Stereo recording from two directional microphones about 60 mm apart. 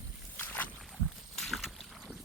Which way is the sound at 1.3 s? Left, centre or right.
Centre.